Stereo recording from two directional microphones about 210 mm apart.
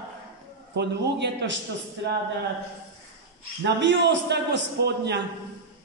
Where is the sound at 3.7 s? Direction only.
55° right (ahead or behind).